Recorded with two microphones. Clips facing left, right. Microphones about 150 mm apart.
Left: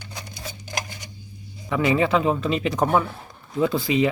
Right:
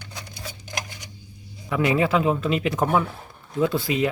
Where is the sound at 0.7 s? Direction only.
15° right (ahead or behind).